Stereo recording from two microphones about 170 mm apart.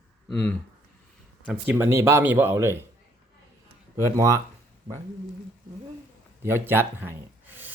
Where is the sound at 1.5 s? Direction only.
10° right (ahead or behind).